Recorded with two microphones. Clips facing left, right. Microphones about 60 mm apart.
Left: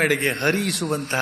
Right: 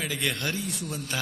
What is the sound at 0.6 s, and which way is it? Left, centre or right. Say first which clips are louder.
Speech: left 9 dB; left.